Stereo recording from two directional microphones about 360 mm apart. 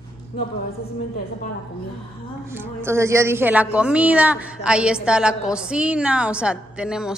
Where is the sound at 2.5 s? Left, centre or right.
Centre.